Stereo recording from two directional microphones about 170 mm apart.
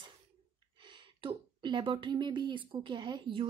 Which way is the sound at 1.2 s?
30° right (ahead or behind).